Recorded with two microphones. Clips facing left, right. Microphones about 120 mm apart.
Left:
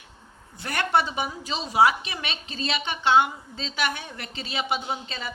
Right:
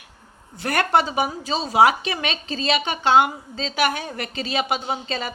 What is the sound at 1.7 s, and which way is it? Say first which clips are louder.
A woman's voice: right 3 dB; 90° right.